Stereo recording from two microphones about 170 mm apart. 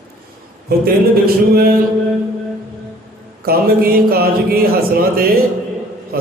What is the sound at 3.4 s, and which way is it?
Speech, 60° right (ahead or behind).